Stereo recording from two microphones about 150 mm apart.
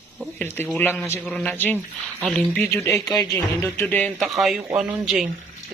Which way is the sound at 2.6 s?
20° left (ahead or behind).